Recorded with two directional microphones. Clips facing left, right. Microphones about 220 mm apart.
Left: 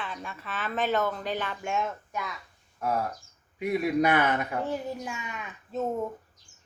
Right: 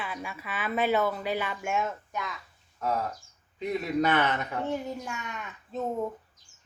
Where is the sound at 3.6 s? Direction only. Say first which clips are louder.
Left 2 dB; 10° left (ahead or behind).